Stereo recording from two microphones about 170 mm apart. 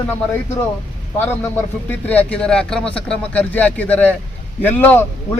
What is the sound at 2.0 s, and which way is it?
A man's voice, 10° left (ahead or behind).